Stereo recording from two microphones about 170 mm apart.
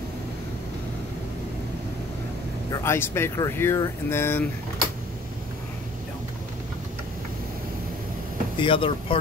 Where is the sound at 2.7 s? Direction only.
15° left (ahead or behind).